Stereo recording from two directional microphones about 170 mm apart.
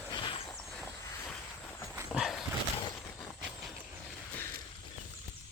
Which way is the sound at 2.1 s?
Centre (ahead or behind).